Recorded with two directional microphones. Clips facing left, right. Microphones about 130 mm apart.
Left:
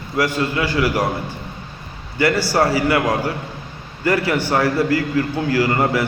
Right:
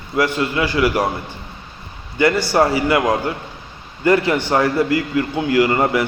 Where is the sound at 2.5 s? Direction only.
20° right (ahead or behind).